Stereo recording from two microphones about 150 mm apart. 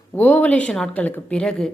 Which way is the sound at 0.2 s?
10° left (ahead or behind).